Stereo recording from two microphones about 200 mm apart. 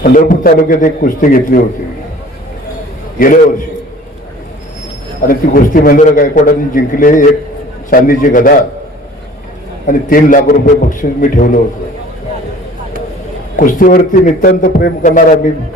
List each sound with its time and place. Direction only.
0.0 s a man's voice: 45° left (ahead or behind)
3.2 s a man's voice: 45° left (ahead or behind)
5.2 s a man's voice: 45° left (ahead or behind)
9.8 s a man's voice: 40° left (ahead or behind)
13.6 s a man's voice: 40° left (ahead or behind)